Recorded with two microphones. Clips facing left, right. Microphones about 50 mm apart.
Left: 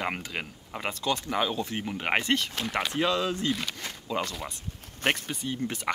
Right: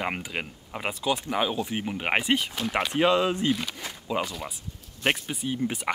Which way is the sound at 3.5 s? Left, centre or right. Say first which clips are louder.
Right 3 dB; centre.